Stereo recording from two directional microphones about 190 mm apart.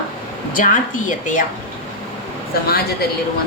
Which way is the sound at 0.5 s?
45° left (ahead or behind).